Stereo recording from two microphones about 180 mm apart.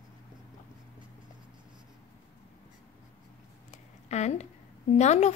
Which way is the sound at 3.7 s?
40° left (ahead or behind).